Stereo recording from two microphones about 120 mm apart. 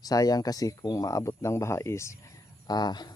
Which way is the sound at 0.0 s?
30° left (ahead or behind).